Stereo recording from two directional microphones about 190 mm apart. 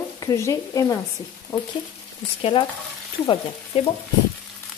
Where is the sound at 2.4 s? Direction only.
25° left (ahead or behind).